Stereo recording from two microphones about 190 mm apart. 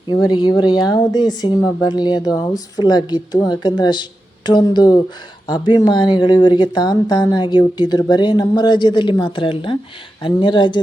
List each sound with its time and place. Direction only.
0.1 s speech: 25° left (ahead or behind)